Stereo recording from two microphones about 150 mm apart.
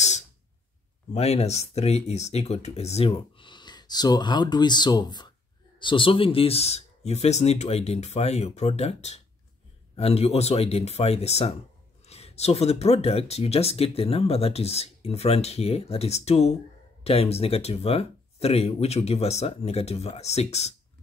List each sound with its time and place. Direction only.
1.1 s speech: 45° left (ahead or behind)